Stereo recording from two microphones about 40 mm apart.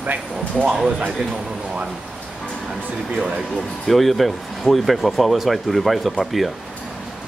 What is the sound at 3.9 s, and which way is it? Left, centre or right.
Speech, centre.